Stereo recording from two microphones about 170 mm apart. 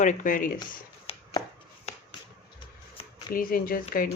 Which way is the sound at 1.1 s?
35° left (ahead or behind).